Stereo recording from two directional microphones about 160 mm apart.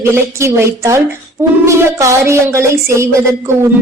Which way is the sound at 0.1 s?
15° right (ahead or behind).